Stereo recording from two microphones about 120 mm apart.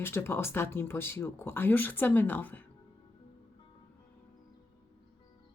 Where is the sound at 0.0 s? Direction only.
20° left (ahead or behind).